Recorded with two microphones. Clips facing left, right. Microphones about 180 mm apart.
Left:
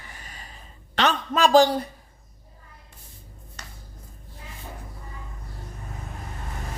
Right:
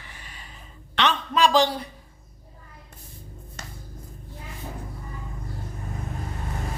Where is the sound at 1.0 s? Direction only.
45° left (ahead or behind).